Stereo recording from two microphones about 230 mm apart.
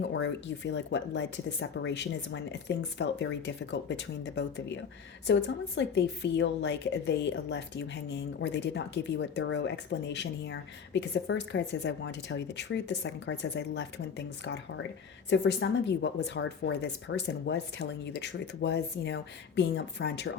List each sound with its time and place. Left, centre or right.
0.0 s a woman's voice: left
15.3 s a woman's voice: left